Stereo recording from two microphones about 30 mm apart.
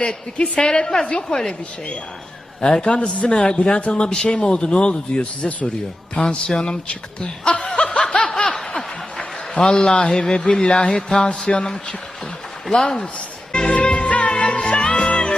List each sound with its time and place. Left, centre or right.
0.0 s speech: left
2.7 s speech: left
3.2 s speech: left
6.2 s speech: left
6.8 s speech: left
7.8 s snicker: left
8.0 s snicker: left
9.6 s speech: left
10.5 s speech: left
10.8 s speech: left
12.7 s speech: left
13.0 s music: left
14.3 s music: left